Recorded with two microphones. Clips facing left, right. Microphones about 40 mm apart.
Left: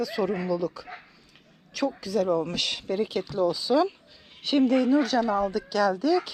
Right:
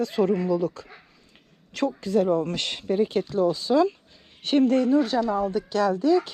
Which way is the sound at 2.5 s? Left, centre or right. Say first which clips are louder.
Right 2 dB; left.